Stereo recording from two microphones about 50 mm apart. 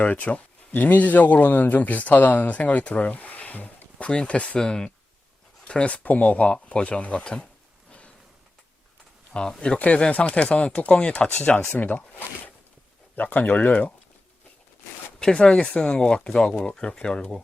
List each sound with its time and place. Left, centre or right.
0.0 s speech: left
3.9 s speech: left
7.9 s a sound: left
9.3 s speech: centre
9.7 s speech: left
11.8 s speech: left
13.1 s speech: left
15.2 s speech: centre